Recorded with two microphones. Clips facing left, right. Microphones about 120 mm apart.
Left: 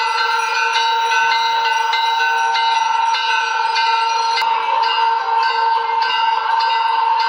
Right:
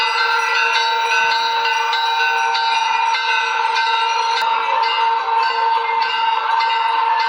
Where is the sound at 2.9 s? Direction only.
60° right (ahead or behind).